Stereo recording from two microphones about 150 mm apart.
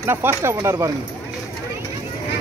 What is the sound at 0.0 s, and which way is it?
Speech, 15° right (ahead or behind).